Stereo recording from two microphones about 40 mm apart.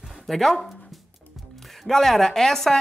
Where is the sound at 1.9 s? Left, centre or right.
Centre.